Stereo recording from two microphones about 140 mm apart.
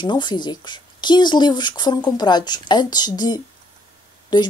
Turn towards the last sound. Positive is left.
turn(degrees=30)  # may be behind; listen again after turning